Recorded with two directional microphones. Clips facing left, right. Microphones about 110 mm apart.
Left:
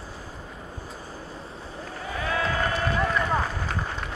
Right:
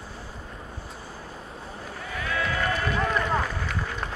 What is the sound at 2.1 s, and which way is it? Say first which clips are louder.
Sheep: left 2 dB; 35° left (ahead or behind).